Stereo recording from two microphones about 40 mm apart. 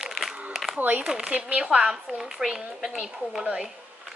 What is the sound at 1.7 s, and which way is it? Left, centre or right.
Speech, centre.